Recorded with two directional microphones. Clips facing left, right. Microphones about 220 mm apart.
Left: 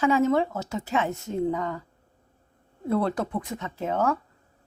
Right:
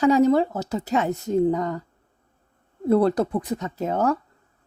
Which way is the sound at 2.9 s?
35° right (ahead or behind).